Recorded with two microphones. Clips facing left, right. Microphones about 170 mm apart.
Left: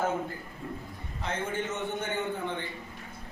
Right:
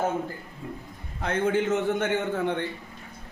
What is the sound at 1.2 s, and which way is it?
A man's voice, 75° right (ahead or behind).